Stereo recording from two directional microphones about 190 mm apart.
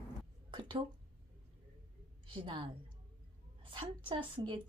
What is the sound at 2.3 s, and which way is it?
Speech, 25° right (ahead or behind).